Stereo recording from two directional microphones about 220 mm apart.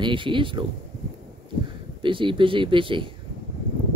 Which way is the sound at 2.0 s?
20° right (ahead or behind).